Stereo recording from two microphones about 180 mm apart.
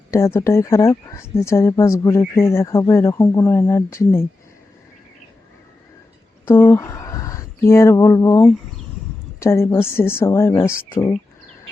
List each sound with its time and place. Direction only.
0.1 s speech: 15° left (ahead or behind)
6.4 s speech: 10° left (ahead or behind)